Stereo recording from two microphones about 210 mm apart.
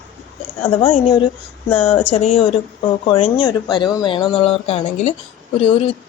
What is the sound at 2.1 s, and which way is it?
A woman's voice, 25° left (ahead or behind).